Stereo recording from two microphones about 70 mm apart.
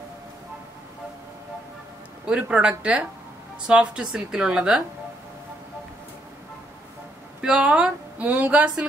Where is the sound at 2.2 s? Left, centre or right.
Centre.